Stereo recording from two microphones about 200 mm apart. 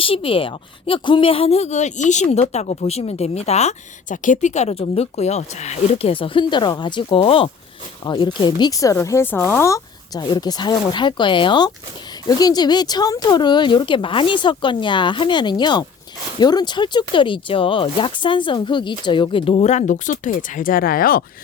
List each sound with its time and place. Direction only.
0.0 s speech: 25° left (ahead or behind); by 21.2 s 45° left (ahead or behind)